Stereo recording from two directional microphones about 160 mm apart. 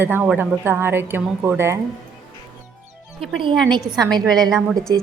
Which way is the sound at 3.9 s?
25° right (ahead or behind).